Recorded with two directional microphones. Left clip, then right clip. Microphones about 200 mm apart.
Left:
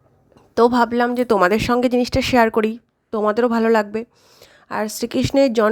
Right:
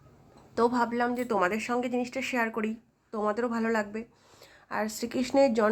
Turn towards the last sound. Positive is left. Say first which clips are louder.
# left 8 dB
turn(degrees=40)  # may be behind; listen again after turning